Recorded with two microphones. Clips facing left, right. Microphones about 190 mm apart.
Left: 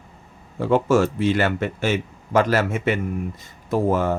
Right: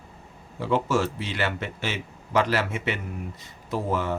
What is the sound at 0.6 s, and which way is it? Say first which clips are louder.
Speech: left 6 dB; 50° left (ahead or behind).